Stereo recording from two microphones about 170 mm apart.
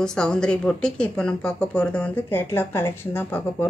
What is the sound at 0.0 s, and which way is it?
Speech, 5° left (ahead or behind).